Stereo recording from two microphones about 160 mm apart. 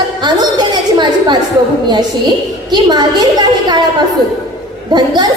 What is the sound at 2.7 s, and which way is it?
A woman's voice, 25° right (ahead or behind).